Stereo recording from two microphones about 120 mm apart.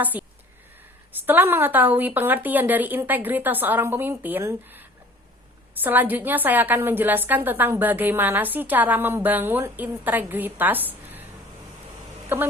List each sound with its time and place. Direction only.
0.0 s a woman's voice: 15° right (ahead or behind)
12.3 s a woman's voice: 15° right (ahead or behind)